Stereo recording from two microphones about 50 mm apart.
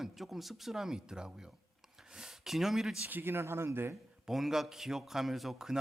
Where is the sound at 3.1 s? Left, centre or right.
Right.